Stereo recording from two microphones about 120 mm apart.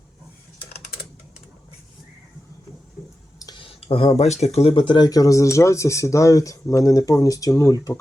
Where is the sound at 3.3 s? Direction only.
30° left (ahead or behind).